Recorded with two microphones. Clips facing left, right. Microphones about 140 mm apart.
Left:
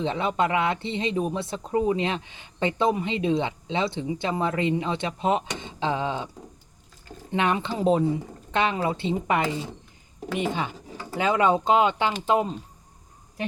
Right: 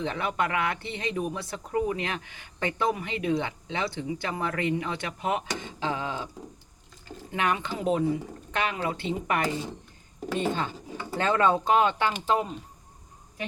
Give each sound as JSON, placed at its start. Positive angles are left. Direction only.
{"t": 0.0, "sound": "speech", "side_deg": 25}
{"t": 7.3, "sound": "speech", "side_deg": 25}